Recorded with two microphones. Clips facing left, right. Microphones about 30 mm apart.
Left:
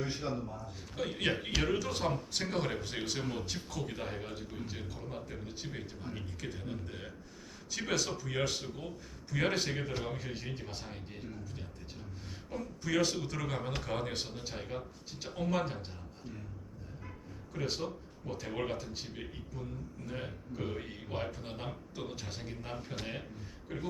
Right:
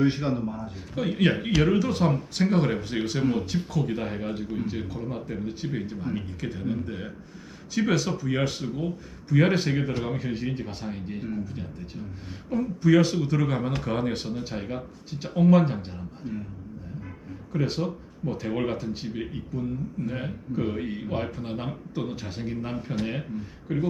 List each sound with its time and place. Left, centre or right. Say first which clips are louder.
0.0 s a man's voice: right 12 dB; right
0.9 s a man's voice: right 9 dB; centre
12.5 s a man's voice: right 14 dB; centre
17.5 s a man's voice: right 9 dB; right